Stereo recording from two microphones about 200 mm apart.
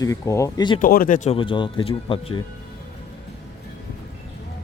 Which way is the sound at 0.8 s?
45° left (ahead or behind).